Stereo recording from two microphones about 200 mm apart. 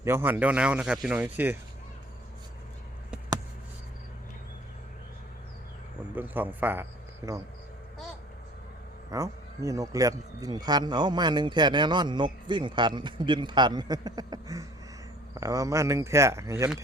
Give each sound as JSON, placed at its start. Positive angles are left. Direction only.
{"t": 0.0, "sound": "a man's voice", "side_deg": -10}
{"t": 6.1, "sound": "a man's voice", "side_deg": -10}
{"t": 9.0, "sound": "a man's voice", "side_deg": -15}